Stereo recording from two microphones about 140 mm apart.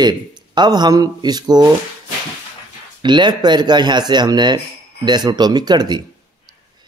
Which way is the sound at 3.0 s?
35° right (ahead or behind).